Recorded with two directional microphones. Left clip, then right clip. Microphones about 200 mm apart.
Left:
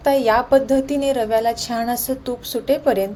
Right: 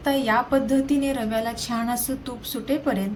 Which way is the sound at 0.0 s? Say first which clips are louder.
Left 6 dB; 40° left (ahead or behind).